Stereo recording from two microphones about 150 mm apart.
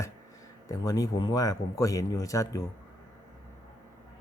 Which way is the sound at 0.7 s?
25° left (ahead or behind).